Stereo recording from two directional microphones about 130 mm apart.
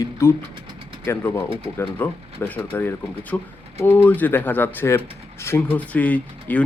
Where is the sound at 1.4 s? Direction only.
45° right (ahead or behind).